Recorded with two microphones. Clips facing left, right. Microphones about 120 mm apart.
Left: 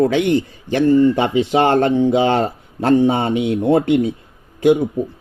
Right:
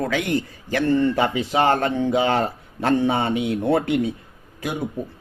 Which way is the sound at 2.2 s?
30° left (ahead or behind).